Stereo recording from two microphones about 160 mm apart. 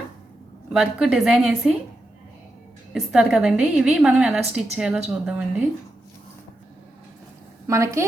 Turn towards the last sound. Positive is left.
turn(degrees=-20)  # may be behind; listen again after turning